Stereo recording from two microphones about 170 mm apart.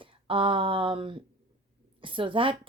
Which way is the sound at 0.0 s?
30° right (ahead or behind).